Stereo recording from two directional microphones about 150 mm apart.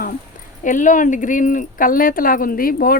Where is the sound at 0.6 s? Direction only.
60° left (ahead or behind).